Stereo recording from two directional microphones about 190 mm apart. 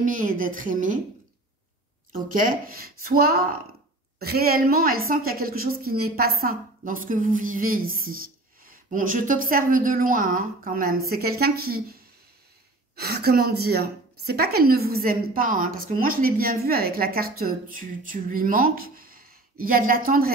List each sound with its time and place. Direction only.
0.0 s a woman's voice: 45° right (ahead or behind)
2.1 s a woman's voice: 45° right (ahead or behind)
13.0 s a woman's voice: 55° right (ahead or behind)